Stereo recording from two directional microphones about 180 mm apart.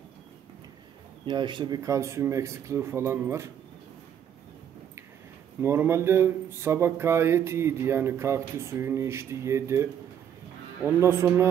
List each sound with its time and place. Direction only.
1.2 s speech: 25° right (ahead or behind)
5.6 s speech: 15° right (ahead or behind)